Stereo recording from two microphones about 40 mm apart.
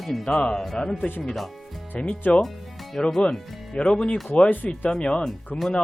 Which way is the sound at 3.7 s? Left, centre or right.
Left.